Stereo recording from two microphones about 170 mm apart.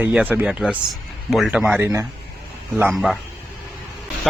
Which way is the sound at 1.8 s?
15° right (ahead or behind).